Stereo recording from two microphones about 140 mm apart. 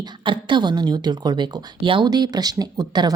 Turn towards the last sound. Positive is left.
turn(degrees=-30)  # may be behind; listen again after turning